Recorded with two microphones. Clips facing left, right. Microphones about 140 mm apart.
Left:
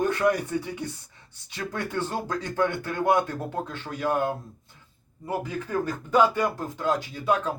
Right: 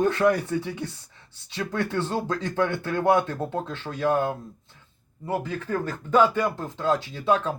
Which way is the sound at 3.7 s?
20° right (ahead or behind).